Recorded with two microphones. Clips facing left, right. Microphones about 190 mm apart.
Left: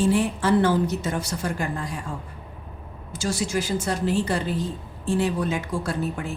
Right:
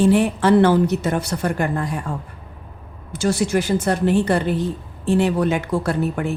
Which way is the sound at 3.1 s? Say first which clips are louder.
Right 7 dB; 60° right (ahead or behind).